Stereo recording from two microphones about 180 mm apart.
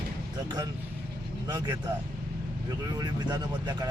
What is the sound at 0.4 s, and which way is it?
Speech, 20° right (ahead or behind).